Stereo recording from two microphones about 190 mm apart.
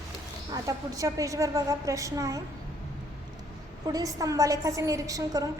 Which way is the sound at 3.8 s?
20° right (ahead or behind).